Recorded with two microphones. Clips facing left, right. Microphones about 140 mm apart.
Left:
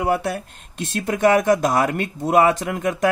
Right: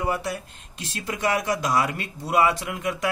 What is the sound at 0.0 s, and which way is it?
Speech, 65° left (ahead or behind).